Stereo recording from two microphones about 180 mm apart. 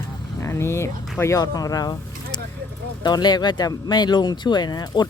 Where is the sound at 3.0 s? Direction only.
25° left (ahead or behind).